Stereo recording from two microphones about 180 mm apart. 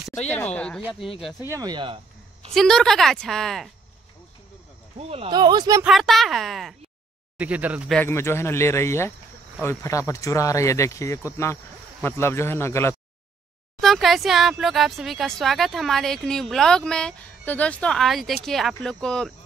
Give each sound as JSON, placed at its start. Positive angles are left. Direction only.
{"t": 0.3, "sound": "speech", "side_deg": 5}
{"t": 1.5, "sound": "speech", "side_deg": -20}
{"t": 2.5, "sound": "speech", "side_deg": 5}
{"t": 4.9, "sound": "speech", "side_deg": -35}
{"t": 5.3, "sound": "speech", "side_deg": -25}
{"t": 5.9, "sound": "speech", "side_deg": 0}
{"t": 7.9, "sound": "speech", "side_deg": 10}
{"t": 13.7, "sound": "speech", "side_deg": 0}